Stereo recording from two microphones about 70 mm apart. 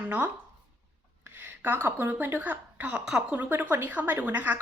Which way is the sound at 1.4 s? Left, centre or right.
Right.